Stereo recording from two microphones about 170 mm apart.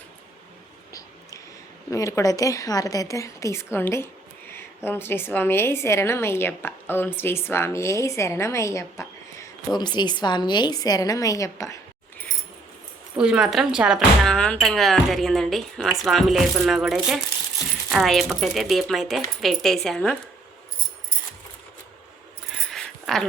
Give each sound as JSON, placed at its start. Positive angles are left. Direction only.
{"t": 1.9, "sound": "a woman's voice", "side_deg": 20}
{"t": 13.1, "sound": "speech", "side_deg": -5}
{"t": 22.4, "sound": "a sound", "side_deg": 0}